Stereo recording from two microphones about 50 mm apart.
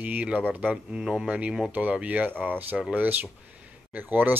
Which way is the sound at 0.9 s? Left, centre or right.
Centre.